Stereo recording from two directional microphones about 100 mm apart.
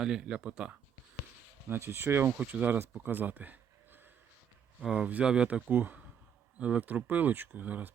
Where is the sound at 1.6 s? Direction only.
25° right (ahead or behind).